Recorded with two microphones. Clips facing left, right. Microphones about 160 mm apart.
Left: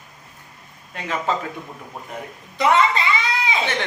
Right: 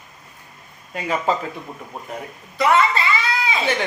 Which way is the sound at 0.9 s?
10° right (ahead or behind).